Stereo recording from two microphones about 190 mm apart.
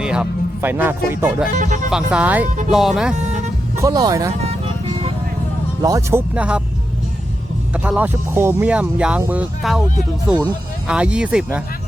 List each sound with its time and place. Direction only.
0.0 s speech: 5° right (ahead or behind)
1.5 s speech: 40° right (ahead or behind)
1.9 s speech: 5° right (ahead or behind)
3.2 s music: 35° right (ahead or behind)
3.8 s speech: 20° right (ahead or behind)
5.8 s speech: 15° right (ahead or behind)
7.7 s speech: 10° right (ahead or behind)
10.8 s speech: 5° right (ahead or behind)